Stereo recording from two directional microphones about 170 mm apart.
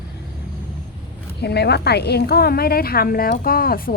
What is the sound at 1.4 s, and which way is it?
Speech, 75° left (ahead or behind).